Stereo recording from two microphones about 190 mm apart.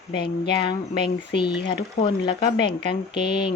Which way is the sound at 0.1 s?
60° left (ahead or behind).